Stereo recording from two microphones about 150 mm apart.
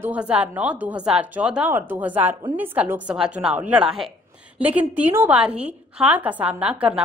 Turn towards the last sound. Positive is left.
turn(degrees=-5)  # may be behind; listen again after turning